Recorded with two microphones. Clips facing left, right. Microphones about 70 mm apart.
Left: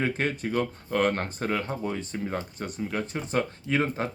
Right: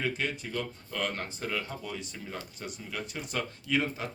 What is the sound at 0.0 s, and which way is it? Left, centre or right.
Speech, left.